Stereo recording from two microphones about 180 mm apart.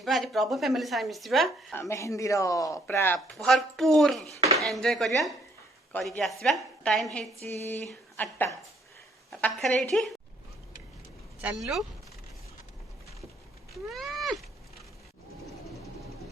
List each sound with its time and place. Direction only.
0.0 s a woman's voice: centre (ahead or behind)
1.7 s speech: 15° left (ahead or behind)
3.3 s a woman's voice: centre (ahead or behind)
7.3 s a sound: 40° right (ahead or behind)
7.9 s a woman's voice: 10° left (ahead or behind)
11.3 s speech: 10° right (ahead or behind)
13.9 s cat: centre (ahead or behind)